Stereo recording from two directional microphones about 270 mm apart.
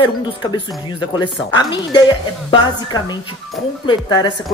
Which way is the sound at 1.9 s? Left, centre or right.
Centre.